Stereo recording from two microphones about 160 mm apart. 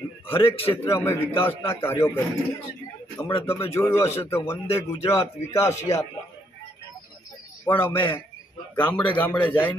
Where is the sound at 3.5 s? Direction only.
15° left (ahead or behind).